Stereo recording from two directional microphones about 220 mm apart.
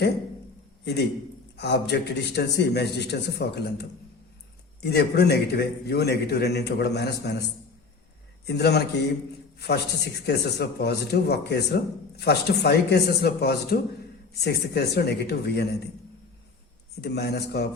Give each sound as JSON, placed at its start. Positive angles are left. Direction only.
{"t": 1.5, "sound": "speech", "side_deg": 50}
{"t": 4.9, "sound": "speech", "side_deg": 45}
{"t": 17.0, "sound": "speech", "side_deg": 50}